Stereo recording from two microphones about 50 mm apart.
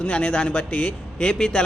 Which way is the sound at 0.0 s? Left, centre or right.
Left.